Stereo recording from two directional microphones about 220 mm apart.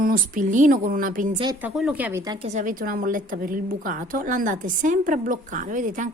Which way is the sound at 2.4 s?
35° right (ahead or behind).